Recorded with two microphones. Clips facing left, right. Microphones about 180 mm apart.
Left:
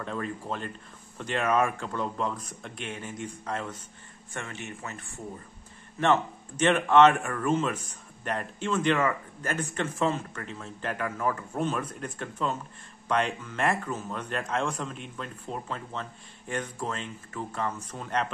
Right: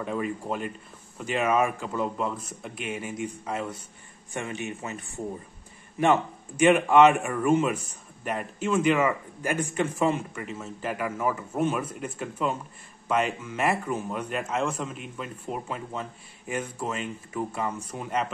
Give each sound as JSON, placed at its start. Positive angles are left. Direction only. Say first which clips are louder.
{"t": 0.0, "sound": "speech", "louder": "right 4 dB", "side_deg": -10}